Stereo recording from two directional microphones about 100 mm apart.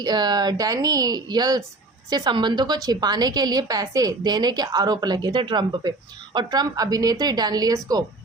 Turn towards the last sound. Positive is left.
turn(degrees=-40)  # may be behind; listen again after turning